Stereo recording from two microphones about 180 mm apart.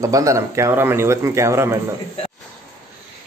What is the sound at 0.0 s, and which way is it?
Speech, 20° right (ahead or behind).